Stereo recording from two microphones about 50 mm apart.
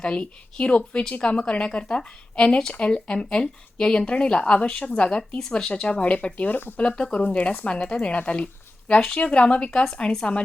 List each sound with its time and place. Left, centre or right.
0.0 s a woman's voice: centre
6.5 s speech: left
6.7 s speech: centre
9.0 s a woman's voice: centre
9.2 s a woman's voice: left